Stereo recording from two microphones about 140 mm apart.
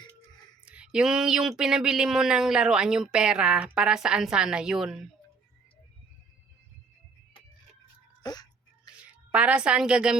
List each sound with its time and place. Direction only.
0.6 s speech: 10° right (ahead or behind)
8.2 s a sound: 30° left (ahead or behind)
9.3 s a woman's voice: 10° right (ahead or behind)